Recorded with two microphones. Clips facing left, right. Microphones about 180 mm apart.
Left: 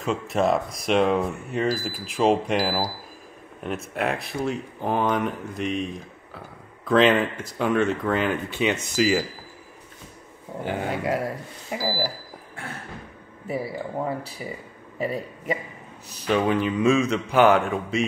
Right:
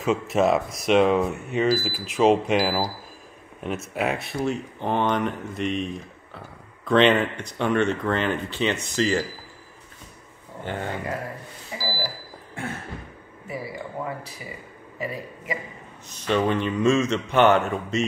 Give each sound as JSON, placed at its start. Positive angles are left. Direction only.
{"t": 0.0, "sound": "speech", "side_deg": 0}
{"t": 10.6, "sound": "speech", "side_deg": 10}
{"t": 10.9, "sound": "speech", "side_deg": 90}
{"t": 11.7, "sound": "cash register", "side_deg": 65}
{"t": 13.5, "sound": "a man's voice", "side_deg": 30}
{"t": 16.3, "sound": "speech", "side_deg": 5}